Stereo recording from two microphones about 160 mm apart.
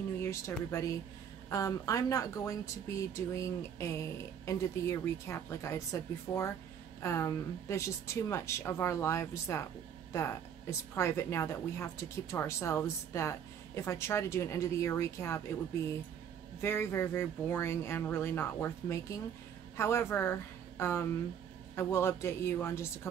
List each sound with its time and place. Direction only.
0.2 s a woman's voice: 15° left (ahead or behind)
16.6 s a woman's voice: 15° left (ahead or behind)